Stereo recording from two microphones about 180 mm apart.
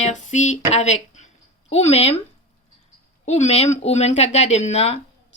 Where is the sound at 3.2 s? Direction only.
40° left (ahead or behind).